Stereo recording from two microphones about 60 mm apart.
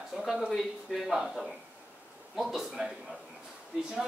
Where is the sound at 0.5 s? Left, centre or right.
Centre.